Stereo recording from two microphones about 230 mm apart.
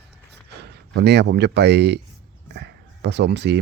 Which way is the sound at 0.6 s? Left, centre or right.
Right.